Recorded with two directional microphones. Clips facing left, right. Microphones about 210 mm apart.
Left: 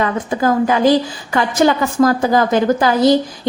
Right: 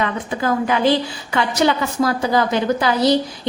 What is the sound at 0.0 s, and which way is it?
A woman's voice, 40° left (ahead or behind).